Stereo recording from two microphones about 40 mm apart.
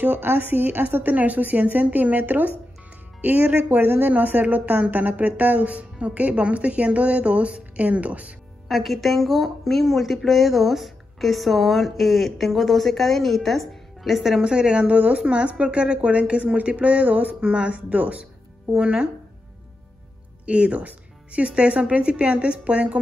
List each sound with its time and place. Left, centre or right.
0.0 s a woman's voice: right
8.6 s a woman's voice: centre
14.4 s speech: right
14.9 s speech: right
17.4 s speech: right
17.8 s speech: right
18.8 s speech: right
20.4 s speech: right